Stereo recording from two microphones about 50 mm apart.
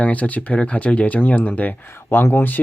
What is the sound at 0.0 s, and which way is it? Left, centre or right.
Speech, left.